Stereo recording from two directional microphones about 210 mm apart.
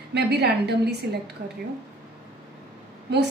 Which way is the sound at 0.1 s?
50° right (ahead or behind).